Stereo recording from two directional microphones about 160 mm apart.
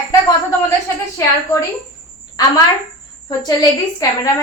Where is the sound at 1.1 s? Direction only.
20° left (ahead or behind).